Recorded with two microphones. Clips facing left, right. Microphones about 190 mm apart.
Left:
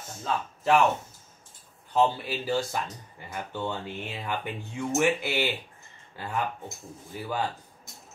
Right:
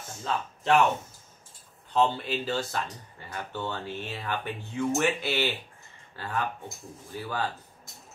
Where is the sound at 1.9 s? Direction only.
10° left (ahead or behind).